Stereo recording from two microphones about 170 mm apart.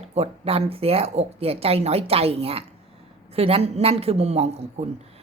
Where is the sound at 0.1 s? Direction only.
35° right (ahead or behind).